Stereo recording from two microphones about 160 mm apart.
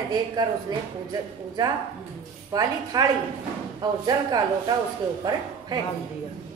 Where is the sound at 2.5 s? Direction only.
25° right (ahead or behind).